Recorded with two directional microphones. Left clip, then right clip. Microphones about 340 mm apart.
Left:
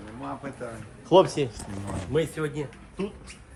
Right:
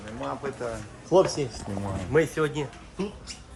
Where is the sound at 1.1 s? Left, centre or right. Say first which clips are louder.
Left 2 dB; centre.